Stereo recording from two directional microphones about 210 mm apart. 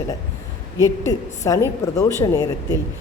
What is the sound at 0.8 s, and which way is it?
A woman's voice, 15° left (ahead or behind).